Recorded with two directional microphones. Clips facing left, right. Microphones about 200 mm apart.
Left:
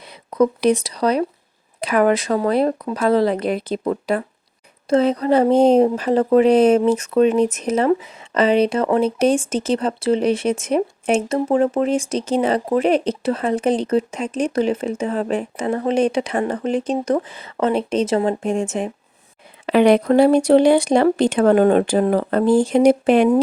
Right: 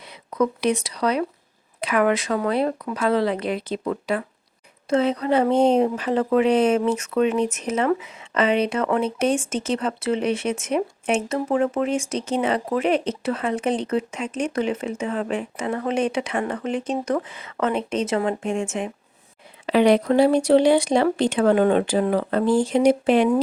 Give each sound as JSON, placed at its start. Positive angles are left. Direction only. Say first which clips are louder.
{"t": 0.1, "sound": "speech", "louder": "left 5 dB", "side_deg": 35}
{"t": 19.6, "sound": "speech", "louder": "left 3 dB", "side_deg": 55}